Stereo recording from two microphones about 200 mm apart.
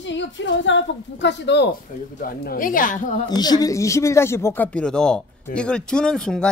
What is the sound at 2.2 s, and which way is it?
Speech, 45° left (ahead or behind).